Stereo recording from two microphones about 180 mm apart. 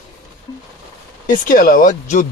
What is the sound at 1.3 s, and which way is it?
Speech, 50° left (ahead or behind).